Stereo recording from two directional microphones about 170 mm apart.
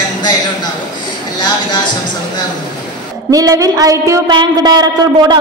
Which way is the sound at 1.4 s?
25° left (ahead or behind).